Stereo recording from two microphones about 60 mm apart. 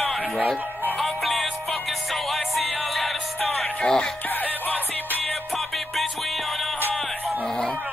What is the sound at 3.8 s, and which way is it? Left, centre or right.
Music, centre.